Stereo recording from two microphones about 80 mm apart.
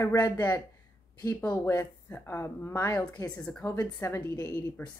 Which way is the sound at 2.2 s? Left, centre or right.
Left.